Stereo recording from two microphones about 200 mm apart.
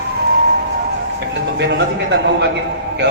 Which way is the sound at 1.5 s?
60° right (ahead or behind).